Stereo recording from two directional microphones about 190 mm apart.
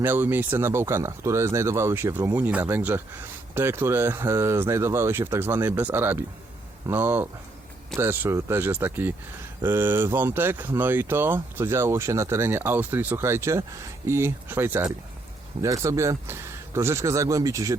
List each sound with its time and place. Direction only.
0.0 s speech: 10° right (ahead or behind)